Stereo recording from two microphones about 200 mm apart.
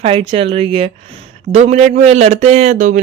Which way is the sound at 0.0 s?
30° right (ahead or behind).